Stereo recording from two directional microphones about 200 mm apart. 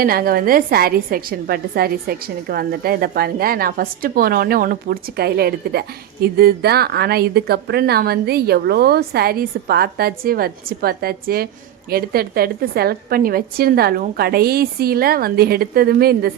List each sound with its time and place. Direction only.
0.0 s a woman's voice: 45° right (ahead or behind)